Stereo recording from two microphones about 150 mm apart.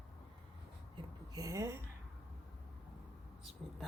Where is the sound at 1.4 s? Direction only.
20° right (ahead or behind).